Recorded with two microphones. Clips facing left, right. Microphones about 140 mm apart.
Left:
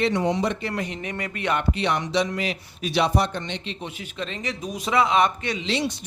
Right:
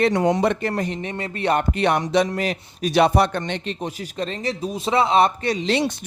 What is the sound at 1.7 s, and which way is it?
Speech, 50° right (ahead or behind).